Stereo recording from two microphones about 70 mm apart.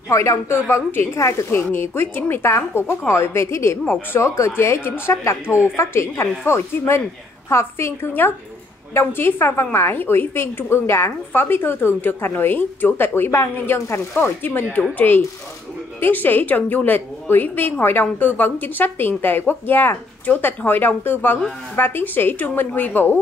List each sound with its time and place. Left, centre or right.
0.1 s a woman's voice: left
1.5 s a woman's voice: left